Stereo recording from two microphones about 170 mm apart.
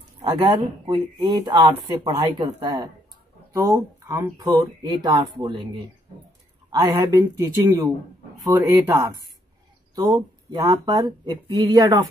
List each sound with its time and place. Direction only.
0.3 s speech: 30° right (ahead or behind)
6.7 s speech: 25° right (ahead or behind)